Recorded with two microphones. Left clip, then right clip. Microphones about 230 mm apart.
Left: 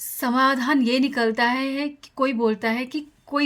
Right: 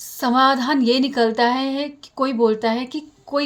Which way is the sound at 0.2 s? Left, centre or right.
Left.